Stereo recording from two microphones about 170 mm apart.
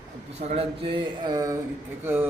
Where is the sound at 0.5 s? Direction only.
35° right (ahead or behind).